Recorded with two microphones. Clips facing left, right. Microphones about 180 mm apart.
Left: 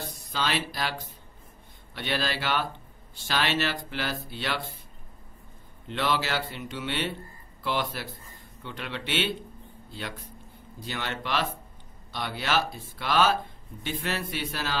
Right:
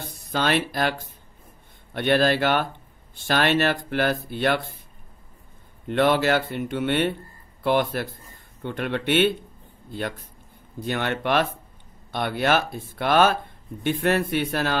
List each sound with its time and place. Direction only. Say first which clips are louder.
0.1 s speech: right 8 dB; 55° right (ahead or behind)
5.9 s speech: right 9 dB; 55° right (ahead or behind)